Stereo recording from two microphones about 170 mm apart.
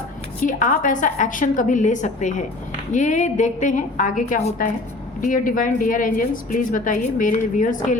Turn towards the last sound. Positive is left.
turn(degrees=50)  # may be behind; listen again after turning